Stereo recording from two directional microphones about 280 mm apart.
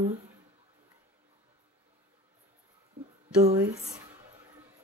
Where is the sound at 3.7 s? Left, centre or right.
Right.